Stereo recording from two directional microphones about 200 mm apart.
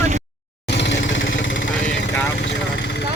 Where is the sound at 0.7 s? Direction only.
60° left (ahead or behind).